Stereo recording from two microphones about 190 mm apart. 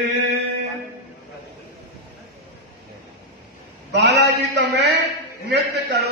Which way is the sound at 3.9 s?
65° right (ahead or behind).